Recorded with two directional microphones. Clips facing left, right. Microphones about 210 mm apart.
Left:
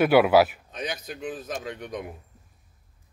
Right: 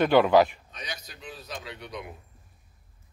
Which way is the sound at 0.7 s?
50° left (ahead or behind).